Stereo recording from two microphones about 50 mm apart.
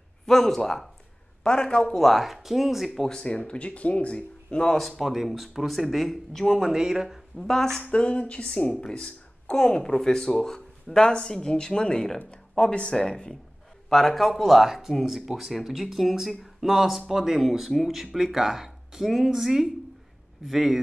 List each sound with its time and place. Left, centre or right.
0.3 s speech: centre
2.0 s speech: centre
3.0 s speech: centre
4.7 s speech: centre
6.7 s speech: centre
7.3 s speech: centre
7.9 s speech: left
13.8 s speech: centre